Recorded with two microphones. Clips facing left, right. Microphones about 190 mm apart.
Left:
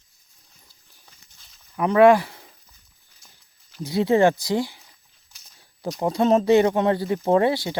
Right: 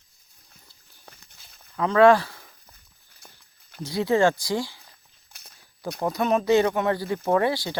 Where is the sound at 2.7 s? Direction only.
60° right (ahead or behind).